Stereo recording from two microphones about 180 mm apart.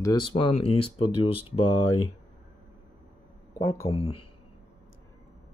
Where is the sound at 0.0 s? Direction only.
25° left (ahead or behind).